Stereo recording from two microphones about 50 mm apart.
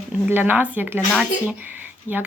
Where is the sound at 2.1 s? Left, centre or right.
Left.